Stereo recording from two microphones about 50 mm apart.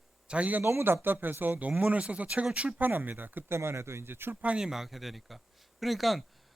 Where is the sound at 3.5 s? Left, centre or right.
Right.